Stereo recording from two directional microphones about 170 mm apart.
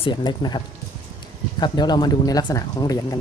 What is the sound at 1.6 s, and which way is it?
Speech, 25° left (ahead or behind).